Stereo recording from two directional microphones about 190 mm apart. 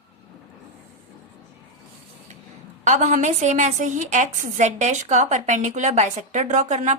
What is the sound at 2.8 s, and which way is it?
A woman's voice, 40° right (ahead or behind).